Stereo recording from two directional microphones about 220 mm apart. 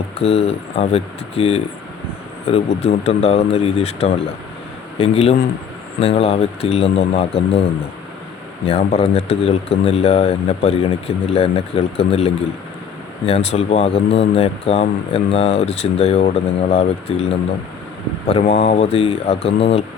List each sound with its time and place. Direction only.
0.2 s speech: 25° left (ahead or behind)
8.6 s speech: 30° left (ahead or behind)
18.3 s speech: 30° left (ahead or behind)